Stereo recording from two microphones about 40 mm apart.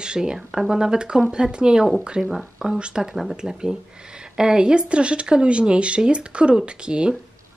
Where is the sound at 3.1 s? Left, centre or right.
Centre; by 7.1 s right.